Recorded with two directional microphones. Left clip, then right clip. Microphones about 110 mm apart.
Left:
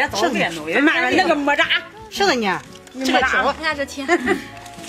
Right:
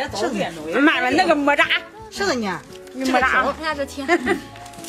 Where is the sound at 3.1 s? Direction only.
30° right (ahead or behind).